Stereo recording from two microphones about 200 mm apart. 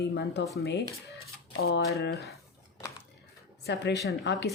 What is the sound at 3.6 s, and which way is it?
Speech, 60° left (ahead or behind).